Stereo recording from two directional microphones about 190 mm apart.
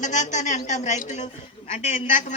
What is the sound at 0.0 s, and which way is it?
A woman's voice, 40° left (ahead or behind).